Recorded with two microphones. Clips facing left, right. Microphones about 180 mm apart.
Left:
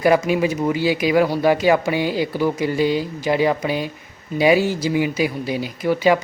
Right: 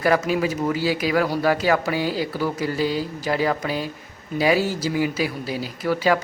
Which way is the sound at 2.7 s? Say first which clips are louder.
Left 4 dB; 40° right (ahead or behind).